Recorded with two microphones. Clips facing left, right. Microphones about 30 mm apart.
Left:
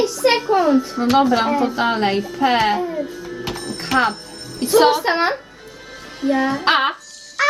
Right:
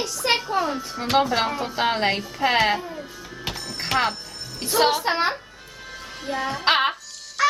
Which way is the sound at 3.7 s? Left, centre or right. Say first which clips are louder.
Left 5 dB; centre.